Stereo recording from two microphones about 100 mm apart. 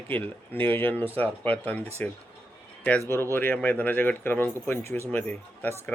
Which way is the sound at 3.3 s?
15° left (ahead or behind).